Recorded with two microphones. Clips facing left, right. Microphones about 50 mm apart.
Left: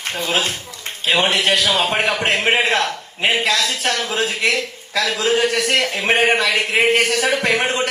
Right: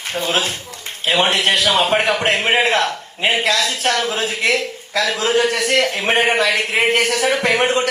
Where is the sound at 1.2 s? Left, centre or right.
Right.